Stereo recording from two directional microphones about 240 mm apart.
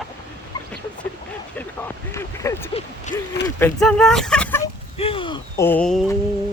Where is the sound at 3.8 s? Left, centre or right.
Centre.